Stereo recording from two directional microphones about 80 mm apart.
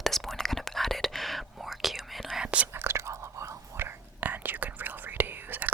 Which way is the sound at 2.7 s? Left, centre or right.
Right.